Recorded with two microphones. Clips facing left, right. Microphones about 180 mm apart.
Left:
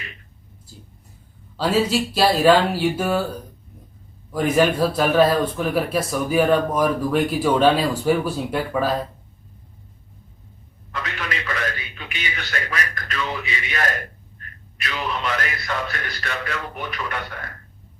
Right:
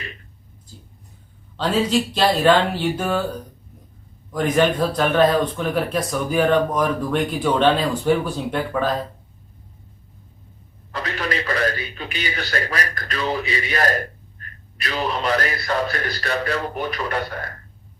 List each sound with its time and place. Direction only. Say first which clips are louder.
1.5 s speech: even; 5° left (ahead or behind)
4.3 s speech: even; 5° left (ahead or behind)
10.9 s a man's voice: right 4 dB; 35° right (ahead or behind)